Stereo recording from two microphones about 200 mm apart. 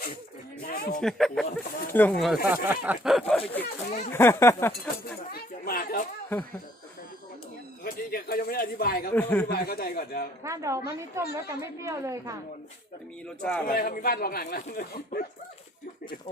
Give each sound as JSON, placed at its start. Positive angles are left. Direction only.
{"t": 0.6, "sound": "speech", "side_deg": 55}
{"t": 0.9, "sound": "speech", "side_deg": 0}
{"t": 3.6, "sound": "speech", "side_deg": 50}
{"t": 4.1, "sound": "speech", "side_deg": 10}
{"t": 5.3, "sound": "chatter", "side_deg": 50}
{"t": 7.9, "sound": "speech", "side_deg": 45}
{"t": 9.1, "sound": "speech", "side_deg": 10}
{"t": 9.5, "sound": "speech", "side_deg": 50}
{"t": 10.4, "sound": "a woman's voice", "side_deg": -15}
{"t": 13.2, "sound": "speech", "side_deg": 5}
{"t": 13.7, "sound": "speech", "side_deg": 45}